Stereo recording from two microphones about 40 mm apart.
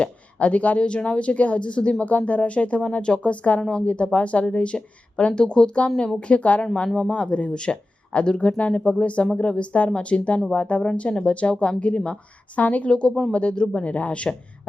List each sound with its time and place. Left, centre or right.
0.0 s speech: left
3.6 s speech: centre
3.8 s speech: left
12.9 s speech: left